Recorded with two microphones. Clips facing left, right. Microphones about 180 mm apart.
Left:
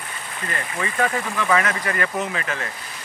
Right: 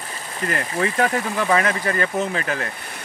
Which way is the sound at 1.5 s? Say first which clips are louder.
Right 1 dB; 30° right (ahead or behind).